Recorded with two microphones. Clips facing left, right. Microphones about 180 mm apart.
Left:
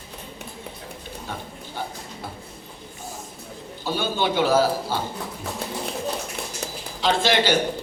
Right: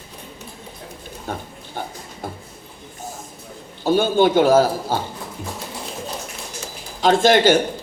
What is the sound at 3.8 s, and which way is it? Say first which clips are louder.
A man's voice: right 9 dB; 50° right (ahead or behind).